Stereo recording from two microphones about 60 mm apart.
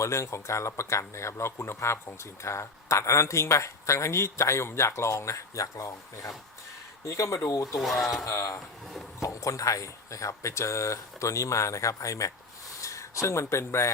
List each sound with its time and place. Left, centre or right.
0.0 s speech: left
7.8 s speech: centre
8.3 s speech: left